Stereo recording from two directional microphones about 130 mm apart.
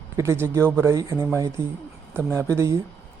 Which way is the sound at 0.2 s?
20° right (ahead or behind).